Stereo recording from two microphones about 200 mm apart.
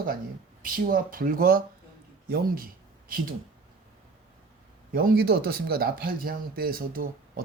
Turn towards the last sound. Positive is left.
turn(degrees=-45)  # may be behind; listen again after turning